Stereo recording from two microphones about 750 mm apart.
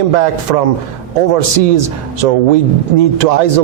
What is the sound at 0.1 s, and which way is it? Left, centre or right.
Speech, right.